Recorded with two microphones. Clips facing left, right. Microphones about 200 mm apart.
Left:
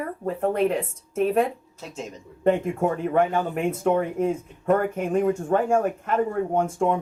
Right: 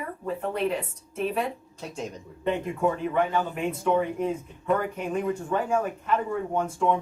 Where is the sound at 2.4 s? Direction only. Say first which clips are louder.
Left 4 dB; 50° left (ahead or behind).